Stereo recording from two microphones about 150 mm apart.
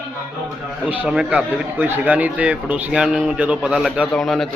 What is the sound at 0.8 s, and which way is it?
A man's voice, 10° right (ahead or behind).